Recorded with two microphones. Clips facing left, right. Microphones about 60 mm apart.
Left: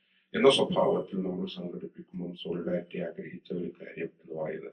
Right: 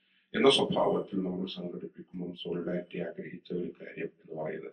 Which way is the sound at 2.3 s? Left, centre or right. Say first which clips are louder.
Left 2 dB; centre.